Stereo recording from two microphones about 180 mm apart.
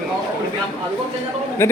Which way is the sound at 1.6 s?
15° left (ahead or behind).